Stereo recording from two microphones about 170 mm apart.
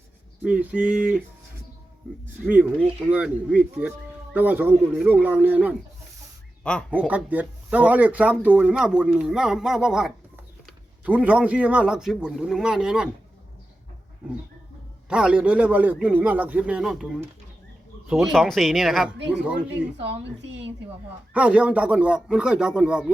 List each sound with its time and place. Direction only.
0.4 s a man's voice: 5° right (ahead or behind)
2.4 s a man's voice: 10° right (ahead or behind)
7.0 s speech: 10° right (ahead or behind)
15.1 s a man's voice: 5° right (ahead or behind)
21.3 s speech: 5° right (ahead or behind)